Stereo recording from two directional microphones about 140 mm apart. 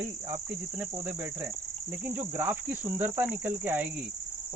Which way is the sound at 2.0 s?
15° right (ahead or behind).